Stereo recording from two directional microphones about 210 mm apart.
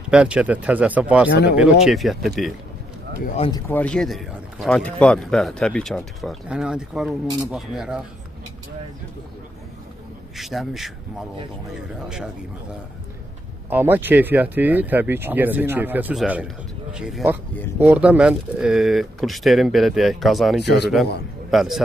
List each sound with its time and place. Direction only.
0.1 s speech: 5° right (ahead or behind)
3.3 s speech: 25° left (ahead or behind)
3.6 s speech: 5° left (ahead or behind)
10.3 s speech: centre (ahead or behind)
13.7 s speech: 10° right (ahead or behind)
20.6 s speech: 55° left (ahead or behind)
21.5 s speech: centre (ahead or behind)